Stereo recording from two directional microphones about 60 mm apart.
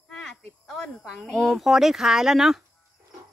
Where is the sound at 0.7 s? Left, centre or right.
Centre.